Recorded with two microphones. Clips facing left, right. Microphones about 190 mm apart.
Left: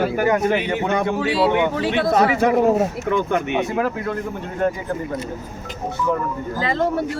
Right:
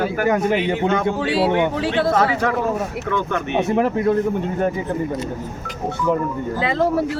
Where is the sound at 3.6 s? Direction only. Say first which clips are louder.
Right 3 dB; 25° right (ahead or behind).